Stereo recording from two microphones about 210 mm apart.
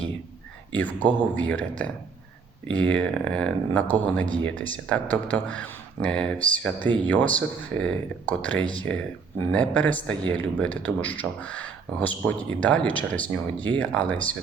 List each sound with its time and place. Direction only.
0.7 s speech: 5° left (ahead or behind)
2.7 s speech: 5° left (ahead or behind)
6.8 s speech: 20° right (ahead or behind)
7.1 s speech: 5° left (ahead or behind)